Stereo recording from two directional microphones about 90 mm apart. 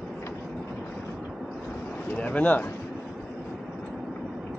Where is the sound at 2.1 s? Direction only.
15° left (ahead or behind).